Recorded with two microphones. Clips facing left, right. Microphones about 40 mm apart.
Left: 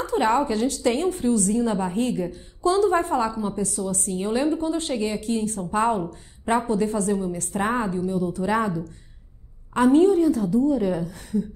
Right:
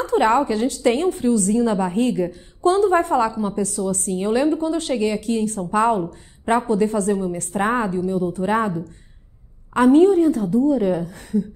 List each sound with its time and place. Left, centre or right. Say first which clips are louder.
0.0 s a woman's voice: right 4 dB; right